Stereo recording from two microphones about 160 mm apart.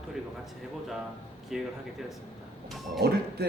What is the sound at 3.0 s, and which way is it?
Speech, 80° right.